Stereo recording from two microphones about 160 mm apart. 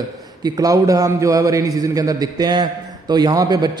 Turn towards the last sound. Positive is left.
turn(degrees=-25)  # may be behind; listen again after turning